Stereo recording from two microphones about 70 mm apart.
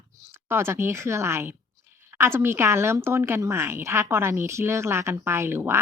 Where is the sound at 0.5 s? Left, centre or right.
Right.